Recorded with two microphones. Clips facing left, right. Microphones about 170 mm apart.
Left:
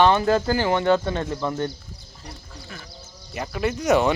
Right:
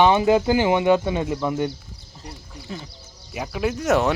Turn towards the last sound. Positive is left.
turn(degrees=0)  # may be behind; listen again after turning